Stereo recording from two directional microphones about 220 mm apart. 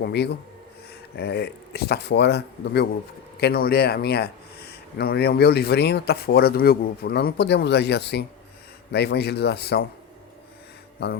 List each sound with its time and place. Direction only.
0.0 s speech: 50° left (ahead or behind)